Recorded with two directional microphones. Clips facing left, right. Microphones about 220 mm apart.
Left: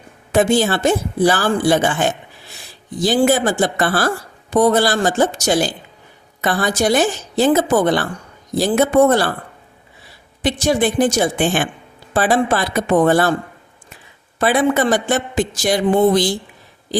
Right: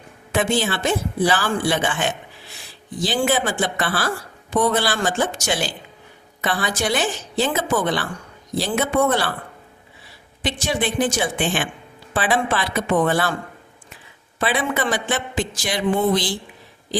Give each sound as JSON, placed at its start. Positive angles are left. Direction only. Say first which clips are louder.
{"t": 0.3, "sound": "a man's voice", "louder": "left 6 dB", "side_deg": 40}
{"t": 10.4, "sound": "a man's voice", "louder": "left 7 dB", "side_deg": 40}
{"t": 14.3, "sound": "a man's voice", "louder": "left 7 dB", "side_deg": 45}